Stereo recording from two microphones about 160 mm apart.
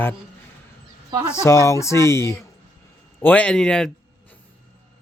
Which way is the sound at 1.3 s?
15° left (ahead or behind).